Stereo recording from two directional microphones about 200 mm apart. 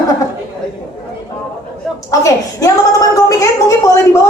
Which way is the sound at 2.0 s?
15° left (ahead or behind).